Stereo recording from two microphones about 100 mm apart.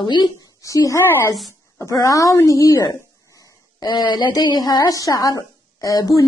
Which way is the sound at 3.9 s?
45° left (ahead or behind).